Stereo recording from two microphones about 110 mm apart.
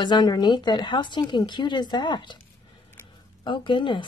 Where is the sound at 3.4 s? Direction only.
45° left (ahead or behind).